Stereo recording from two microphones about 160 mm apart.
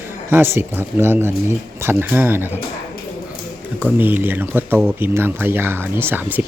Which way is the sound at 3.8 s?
10° right (ahead or behind).